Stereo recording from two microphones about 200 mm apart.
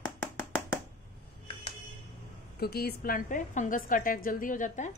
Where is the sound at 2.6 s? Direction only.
50° left (ahead or behind).